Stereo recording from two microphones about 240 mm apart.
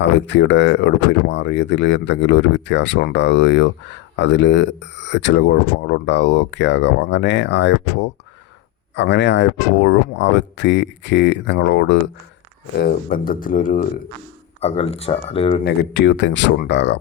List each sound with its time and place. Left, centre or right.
0.0 s speech: left
15.6 s speech: left